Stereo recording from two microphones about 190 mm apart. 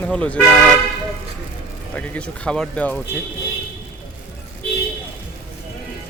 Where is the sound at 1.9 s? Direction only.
5° left (ahead or behind).